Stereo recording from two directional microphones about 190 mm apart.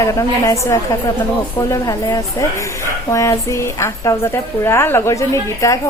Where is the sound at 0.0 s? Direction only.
15° left (ahead or behind).